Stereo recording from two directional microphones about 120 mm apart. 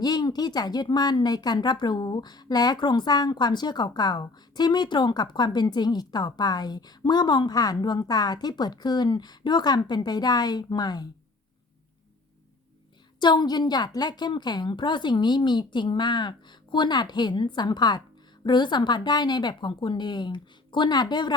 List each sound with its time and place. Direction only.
0.0 s speech: 35° left (ahead or behind)
13.1 s speech: 40° left (ahead or behind)